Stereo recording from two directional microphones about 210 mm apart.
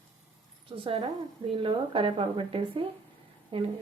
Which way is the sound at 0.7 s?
25° right (ahead or behind).